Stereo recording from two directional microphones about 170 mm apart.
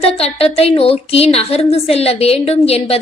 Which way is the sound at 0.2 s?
35° left (ahead or behind).